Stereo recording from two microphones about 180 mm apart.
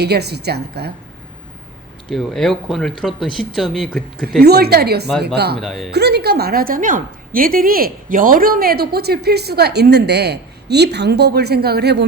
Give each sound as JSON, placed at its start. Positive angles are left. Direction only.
{"t": 0.0, "sound": "a woman's voice", "side_deg": -65}
{"t": 2.0, "sound": "speech", "side_deg": 0}
{"t": 4.4, "sound": "a woman's voice", "side_deg": -60}
{"t": 5.5, "sound": "speech", "side_deg": 0}
{"t": 5.9, "sound": "a woman's voice", "side_deg": -65}